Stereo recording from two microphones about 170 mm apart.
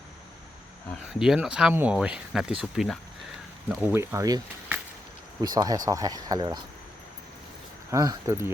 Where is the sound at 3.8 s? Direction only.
15° right (ahead or behind).